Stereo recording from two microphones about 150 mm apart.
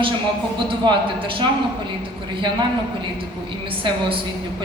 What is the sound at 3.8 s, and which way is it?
Speech, 35° right (ahead or behind).